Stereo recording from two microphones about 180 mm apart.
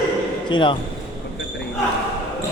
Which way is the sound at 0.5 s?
25° left (ahead or behind).